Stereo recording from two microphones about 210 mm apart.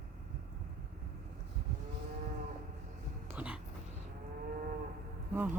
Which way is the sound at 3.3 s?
5° right (ahead or behind).